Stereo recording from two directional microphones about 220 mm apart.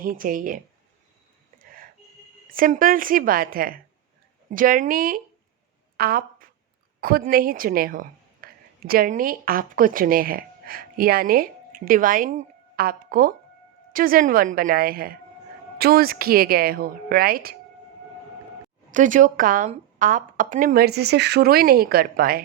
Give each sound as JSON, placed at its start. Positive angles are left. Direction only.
{"t": 0.0, "sound": "a woman's voice", "side_deg": -40}
{"t": 1.5, "sound": "a sound", "side_deg": -40}
{"t": 2.5, "sound": "a woman's voice", "side_deg": -40}
{"t": 6.0, "sound": "a sound", "side_deg": -40}
{"t": 7.0, "sound": "a woman's voice", "side_deg": -40}
{"t": 18.9, "sound": "a woman's voice", "side_deg": -35}